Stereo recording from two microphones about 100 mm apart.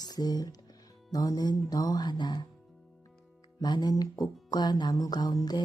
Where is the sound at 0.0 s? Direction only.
40° left (ahead or behind).